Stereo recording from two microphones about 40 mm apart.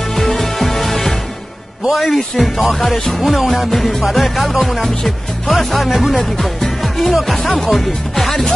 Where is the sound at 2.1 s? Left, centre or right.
Centre.